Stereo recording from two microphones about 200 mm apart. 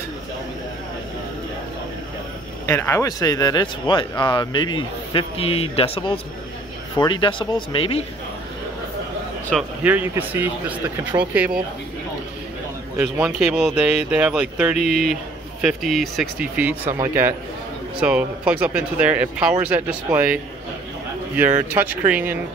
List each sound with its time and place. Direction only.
2.6 s speech: 15° left (ahead or behind)
9.5 s speech: 5° right (ahead or behind)
12.9 s speech: 10° right (ahead or behind)
21.5 s speech: 10° right (ahead or behind)